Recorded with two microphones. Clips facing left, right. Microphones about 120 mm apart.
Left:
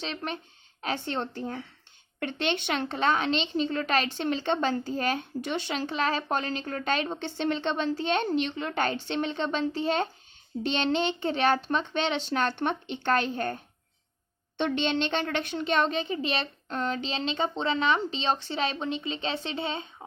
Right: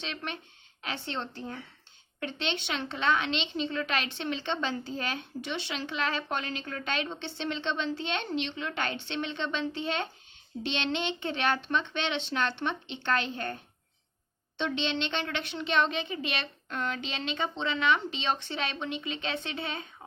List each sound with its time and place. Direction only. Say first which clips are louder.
0.0 s a woman's voice: left 4 dB; 40° left (ahead or behind)
14.6 s a woman's voice: left 4 dB; 50° left (ahead or behind); by 19.9 s 25° left (ahead or behind)